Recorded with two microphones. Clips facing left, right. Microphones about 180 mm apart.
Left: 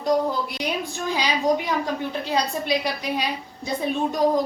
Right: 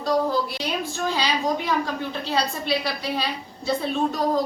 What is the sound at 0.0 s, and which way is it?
A woman's voice, 15° left (ahead or behind).